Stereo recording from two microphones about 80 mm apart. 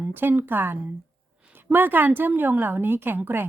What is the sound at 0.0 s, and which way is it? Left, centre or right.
A woman's voice, right.